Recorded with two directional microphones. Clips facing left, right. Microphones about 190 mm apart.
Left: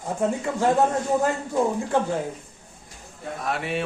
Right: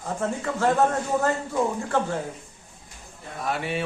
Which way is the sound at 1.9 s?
15° left (ahead or behind).